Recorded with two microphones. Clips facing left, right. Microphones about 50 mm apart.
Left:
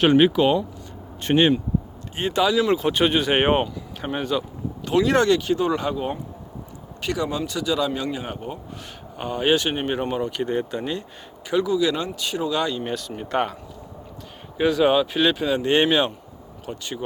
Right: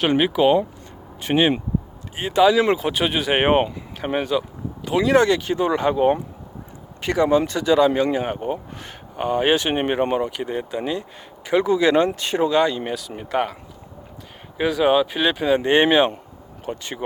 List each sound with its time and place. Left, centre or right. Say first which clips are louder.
0.0 s speech: left 1 dB; centre; by 8.3 s right
9.1 s speech: right 2 dB; centre
10.2 s speech: left 2 dB; centre
11.4 s speech: right 3 dB; right
12.8 s speech: even; centre
14.6 s speech: right 1 dB; centre
15.5 s speech: right 6 dB; right